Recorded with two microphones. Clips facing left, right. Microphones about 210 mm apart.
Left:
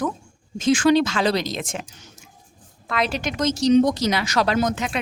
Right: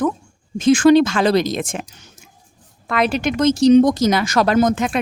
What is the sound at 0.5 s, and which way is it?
Speech, 50° right (ahead or behind).